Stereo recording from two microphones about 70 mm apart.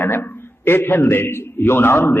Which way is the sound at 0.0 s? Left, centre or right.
Left.